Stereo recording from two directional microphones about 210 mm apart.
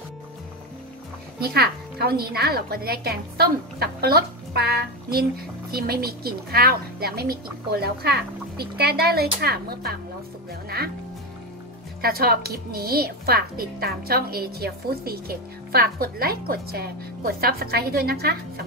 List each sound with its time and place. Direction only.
1.4 s a woman's voice: 50° right (ahead or behind)
12.0 s a woman's voice: 45° right (ahead or behind)